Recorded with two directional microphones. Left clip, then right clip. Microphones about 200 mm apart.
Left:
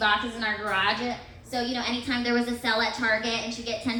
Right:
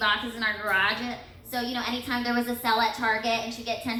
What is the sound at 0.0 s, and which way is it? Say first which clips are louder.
A woman's voice: left 1 dB; 55° right (ahead or behind).